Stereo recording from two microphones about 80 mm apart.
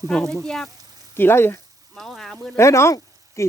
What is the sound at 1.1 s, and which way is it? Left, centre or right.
Speech, left.